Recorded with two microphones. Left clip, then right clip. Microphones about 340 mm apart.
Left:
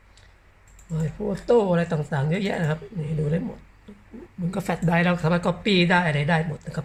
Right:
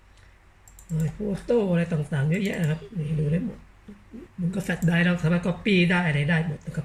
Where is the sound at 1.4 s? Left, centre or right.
Centre.